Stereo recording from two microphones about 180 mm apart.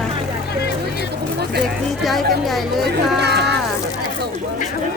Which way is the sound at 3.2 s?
65° right (ahead or behind).